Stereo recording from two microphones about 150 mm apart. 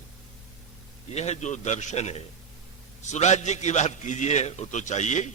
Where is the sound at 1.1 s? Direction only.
45° left (ahead or behind).